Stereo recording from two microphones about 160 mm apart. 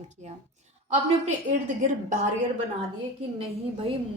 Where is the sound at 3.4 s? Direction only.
35° right (ahead or behind).